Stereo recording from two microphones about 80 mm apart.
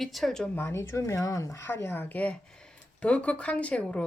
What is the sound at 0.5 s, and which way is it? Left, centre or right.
A woman's voice, left.